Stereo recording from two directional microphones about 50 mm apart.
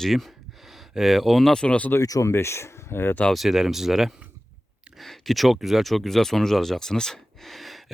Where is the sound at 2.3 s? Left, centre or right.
Left.